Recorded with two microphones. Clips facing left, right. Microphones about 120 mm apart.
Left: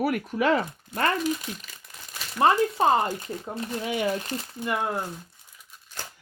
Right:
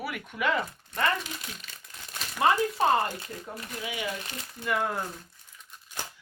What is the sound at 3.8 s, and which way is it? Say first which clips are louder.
Speech: left 7 dB; 45° left (ahead or behind).